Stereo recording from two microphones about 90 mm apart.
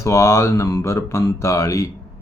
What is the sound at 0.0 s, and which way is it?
Speech, 30° left (ahead or behind).